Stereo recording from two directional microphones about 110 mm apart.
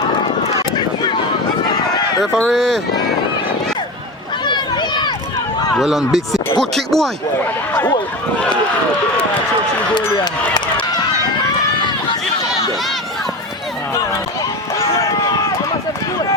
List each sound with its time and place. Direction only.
1.6 s run: 35° left (ahead or behind)
2.2 s speech: 5° left (ahead or behind)
4.4 s a sound: 40° left (ahead or behind)
5.8 s speech: centre (ahead or behind)
14.9 s run: 25° left (ahead or behind)